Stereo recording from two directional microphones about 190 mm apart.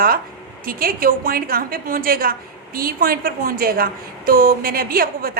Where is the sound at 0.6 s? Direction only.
50° right (ahead or behind).